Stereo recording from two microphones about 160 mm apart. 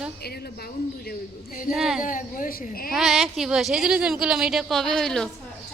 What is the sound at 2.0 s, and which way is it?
Speech, 55° left (ahead or behind).